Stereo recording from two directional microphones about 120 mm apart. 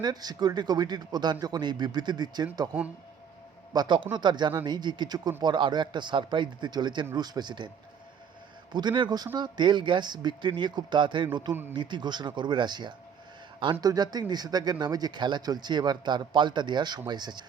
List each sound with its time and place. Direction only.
0.0 s speech: 35° right (ahead or behind)
3.7 s speech: 40° right (ahead or behind)
8.7 s speech: 40° right (ahead or behind)